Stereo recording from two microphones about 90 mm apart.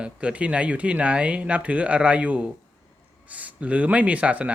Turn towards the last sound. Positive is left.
turn(degrees=-15)  # may be behind; listen again after turning